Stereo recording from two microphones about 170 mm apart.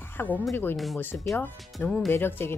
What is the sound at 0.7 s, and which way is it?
Speech, centre (ahead or behind).